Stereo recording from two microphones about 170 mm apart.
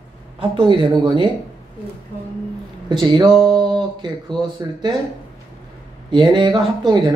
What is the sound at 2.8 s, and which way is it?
Speech, 25° right (ahead or behind).